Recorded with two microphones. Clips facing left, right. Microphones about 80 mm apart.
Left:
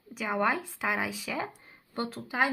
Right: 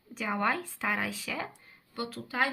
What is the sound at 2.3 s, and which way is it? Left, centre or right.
Speech, centre.